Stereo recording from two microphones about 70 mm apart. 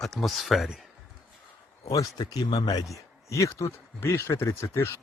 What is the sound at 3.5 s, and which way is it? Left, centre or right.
Speech, left.